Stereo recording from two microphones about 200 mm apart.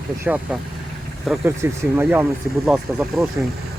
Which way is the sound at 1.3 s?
Centre (ahead or behind).